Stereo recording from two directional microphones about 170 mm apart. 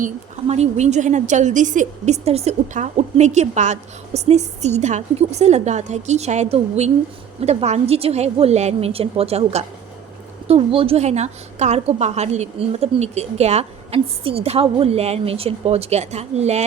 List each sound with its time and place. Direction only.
0.0 s a woman's voice: 40° right (ahead or behind)